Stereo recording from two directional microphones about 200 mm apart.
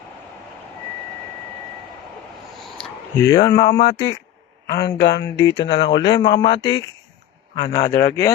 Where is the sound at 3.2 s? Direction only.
15° left (ahead or behind).